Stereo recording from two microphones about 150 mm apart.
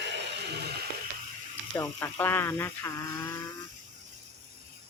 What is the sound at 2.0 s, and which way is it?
Speech, 15° left (ahead or behind).